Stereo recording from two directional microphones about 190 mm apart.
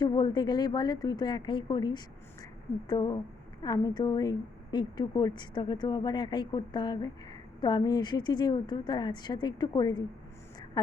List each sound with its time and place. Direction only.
0.0 s a woman's voice: 20° left (ahead or behind)